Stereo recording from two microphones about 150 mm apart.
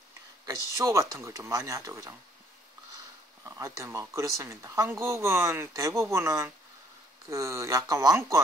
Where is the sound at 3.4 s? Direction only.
20° right (ahead or behind).